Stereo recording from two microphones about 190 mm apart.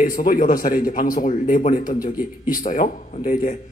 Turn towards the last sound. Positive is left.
turn(degrees=45)  # may be behind; listen again after turning